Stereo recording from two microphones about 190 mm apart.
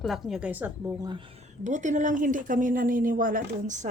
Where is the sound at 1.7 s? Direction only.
40° right (ahead or behind).